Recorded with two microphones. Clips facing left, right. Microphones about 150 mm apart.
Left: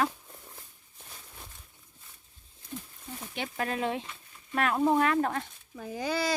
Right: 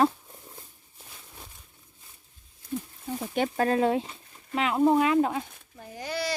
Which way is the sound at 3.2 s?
40° right (ahead or behind).